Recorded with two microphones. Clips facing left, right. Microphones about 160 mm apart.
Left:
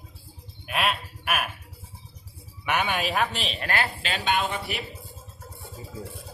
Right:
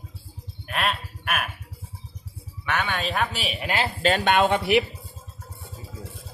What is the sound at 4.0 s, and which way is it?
Speech, 50° right (ahead or behind).